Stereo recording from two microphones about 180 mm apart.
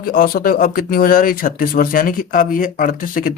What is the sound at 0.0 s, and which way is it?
Speech, 50° left (ahead or behind).